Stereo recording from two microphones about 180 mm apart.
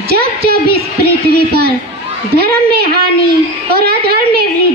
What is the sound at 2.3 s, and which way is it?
A woman's voice, 60° right (ahead or behind).